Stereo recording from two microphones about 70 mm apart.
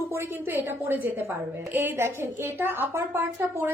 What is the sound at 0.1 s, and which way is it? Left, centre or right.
A woman's voice, right.